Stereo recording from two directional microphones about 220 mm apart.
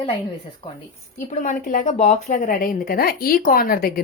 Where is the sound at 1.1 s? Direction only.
35° left (ahead or behind).